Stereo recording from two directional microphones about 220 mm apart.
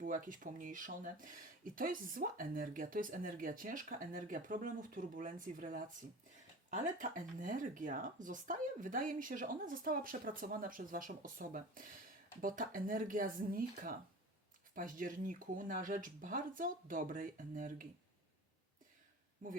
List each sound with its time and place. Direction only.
0.0 s speech: 35° right (ahead or behind)
7.0 s speech: 35° right (ahead or behind)
19.4 s speech: 35° right (ahead or behind)